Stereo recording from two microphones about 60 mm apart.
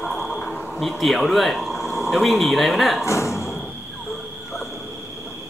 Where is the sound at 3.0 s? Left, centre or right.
Left.